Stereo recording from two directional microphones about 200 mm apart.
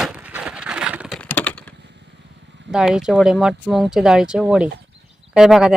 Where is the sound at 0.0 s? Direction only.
5° right (ahead or behind).